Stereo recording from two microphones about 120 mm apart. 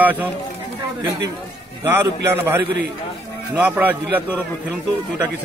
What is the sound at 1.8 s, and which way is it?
A man's voice, 20° right (ahead or behind).